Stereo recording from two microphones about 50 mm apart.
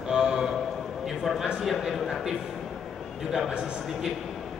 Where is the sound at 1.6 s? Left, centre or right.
Centre.